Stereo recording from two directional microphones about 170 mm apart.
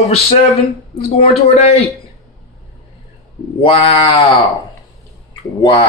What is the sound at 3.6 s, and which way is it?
A man's voice, 35° left (ahead or behind).